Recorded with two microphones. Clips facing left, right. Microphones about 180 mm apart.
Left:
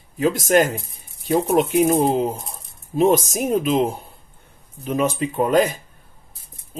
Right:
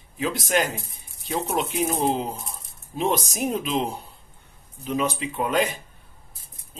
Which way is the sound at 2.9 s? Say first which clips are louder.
Left 8 dB; 45° left (ahead or behind).